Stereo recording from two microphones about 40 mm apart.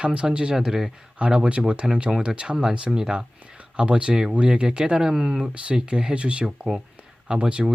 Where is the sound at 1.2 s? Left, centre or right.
Right.